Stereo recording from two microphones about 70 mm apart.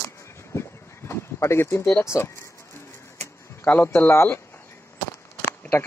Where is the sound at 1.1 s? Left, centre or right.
Left.